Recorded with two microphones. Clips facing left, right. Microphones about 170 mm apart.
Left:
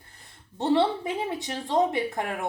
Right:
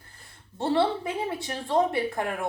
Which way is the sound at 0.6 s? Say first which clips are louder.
Left 1 dB; 20° left (ahead or behind).